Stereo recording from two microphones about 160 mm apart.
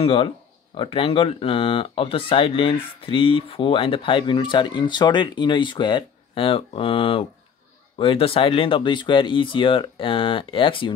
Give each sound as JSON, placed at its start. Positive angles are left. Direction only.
{"t": 0.0, "sound": "speech", "side_deg": 35}